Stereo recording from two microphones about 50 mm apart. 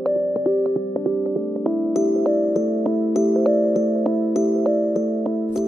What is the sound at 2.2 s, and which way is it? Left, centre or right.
Music, centre.